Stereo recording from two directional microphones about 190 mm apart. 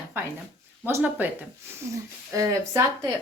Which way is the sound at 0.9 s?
10° right (ahead or behind).